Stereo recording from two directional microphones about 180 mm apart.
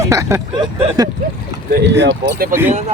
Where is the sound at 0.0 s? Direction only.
15° right (ahead or behind).